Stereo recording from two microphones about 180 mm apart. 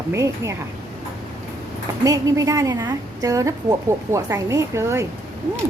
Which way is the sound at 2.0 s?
20° right (ahead or behind).